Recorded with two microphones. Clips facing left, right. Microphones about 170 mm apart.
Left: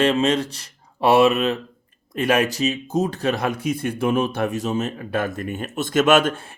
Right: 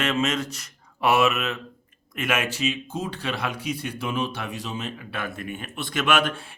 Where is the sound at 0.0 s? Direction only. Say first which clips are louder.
Left 6 dB; 30° left (ahead or behind).